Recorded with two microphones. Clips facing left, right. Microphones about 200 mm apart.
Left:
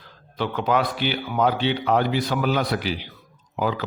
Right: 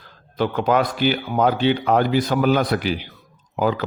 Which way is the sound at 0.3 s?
45° right (ahead or behind).